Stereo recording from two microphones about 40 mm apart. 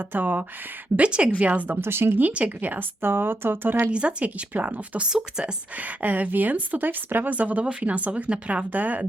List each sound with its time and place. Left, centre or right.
0.0 s speech: right
0.9 s speech: right
1.8 s speech: right
2.3 s speech: right
3.0 s speech: right
3.9 s speech: right
4.5 s speech: right
5.0 s speech: right
5.7 s speech: right
7.6 s speech: right
7.9 s speech: right